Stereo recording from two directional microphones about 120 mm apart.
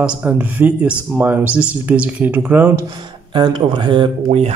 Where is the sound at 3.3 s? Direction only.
40° right (ahead or behind).